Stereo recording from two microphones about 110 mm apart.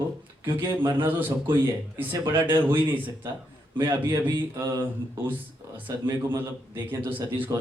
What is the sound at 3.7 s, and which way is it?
Speech, 35° right (ahead or behind).